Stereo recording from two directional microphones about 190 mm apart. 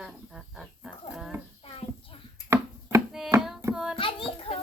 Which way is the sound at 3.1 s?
Centre (ahead or behind).